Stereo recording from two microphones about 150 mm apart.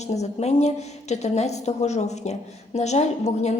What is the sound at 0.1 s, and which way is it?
A woman's voice, 45° left (ahead or behind).